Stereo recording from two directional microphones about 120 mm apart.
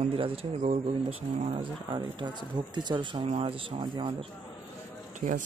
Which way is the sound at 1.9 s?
40° right (ahead or behind).